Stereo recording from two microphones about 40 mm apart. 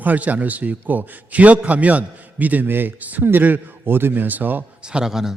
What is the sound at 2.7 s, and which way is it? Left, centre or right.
A man's voice, right.